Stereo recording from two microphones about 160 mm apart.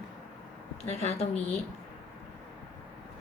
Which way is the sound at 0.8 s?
40° left (ahead or behind).